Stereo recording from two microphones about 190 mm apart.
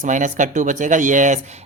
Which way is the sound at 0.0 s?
40° right (ahead or behind).